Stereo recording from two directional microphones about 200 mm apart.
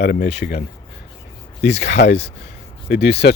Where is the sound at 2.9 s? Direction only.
55° left (ahead or behind).